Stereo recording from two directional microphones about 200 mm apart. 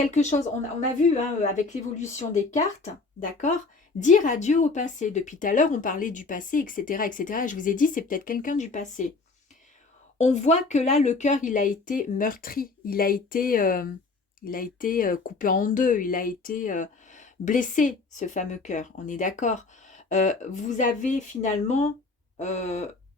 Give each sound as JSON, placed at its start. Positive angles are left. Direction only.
{"t": 0.1, "sound": "speech", "side_deg": 35}
{"t": 10.2, "sound": "speech", "side_deg": 35}